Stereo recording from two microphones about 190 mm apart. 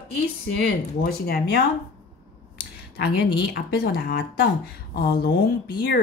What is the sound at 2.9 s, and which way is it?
Speech, 55° left (ahead or behind).